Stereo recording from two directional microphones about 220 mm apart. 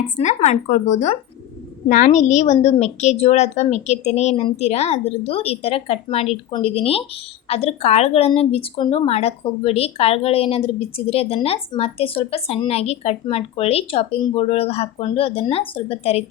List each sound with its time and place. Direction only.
0.2 s a woman's voice: 30° left (ahead or behind)